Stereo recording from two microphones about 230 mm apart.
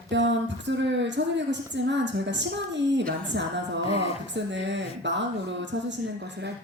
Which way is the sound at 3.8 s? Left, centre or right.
Left.